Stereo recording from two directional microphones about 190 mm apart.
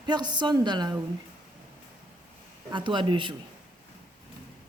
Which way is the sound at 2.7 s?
25° right (ahead or behind).